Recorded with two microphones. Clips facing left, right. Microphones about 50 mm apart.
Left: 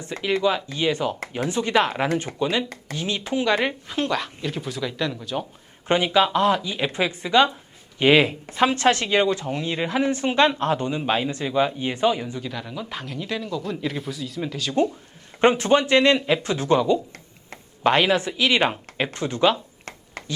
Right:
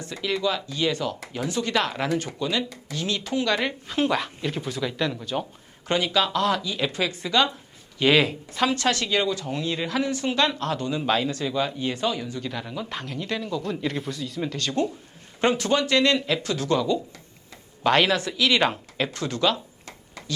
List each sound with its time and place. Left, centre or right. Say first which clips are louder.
0.0 s speech: left 4 dB; left
3.8 s speech: right 1 dB; centre
5.9 s speech: left 4 dB; left
12.4 s speech: even; centre
15.4 s speech: left 4 dB; left
20.2 s a sound: left 3 dB; left